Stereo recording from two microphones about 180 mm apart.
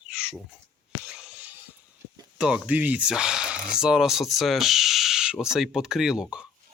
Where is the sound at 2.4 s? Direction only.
5° right (ahead or behind).